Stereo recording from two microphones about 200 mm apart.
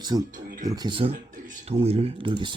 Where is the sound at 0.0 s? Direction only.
20° right (ahead or behind).